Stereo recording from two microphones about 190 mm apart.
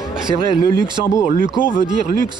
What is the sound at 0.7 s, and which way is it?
Speech, 15° left (ahead or behind).